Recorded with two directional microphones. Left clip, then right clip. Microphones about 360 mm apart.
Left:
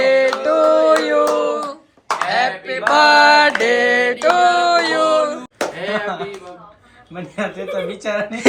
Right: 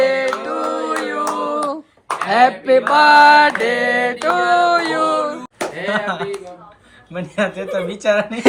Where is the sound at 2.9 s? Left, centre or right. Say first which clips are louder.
Right 1 dB; centre.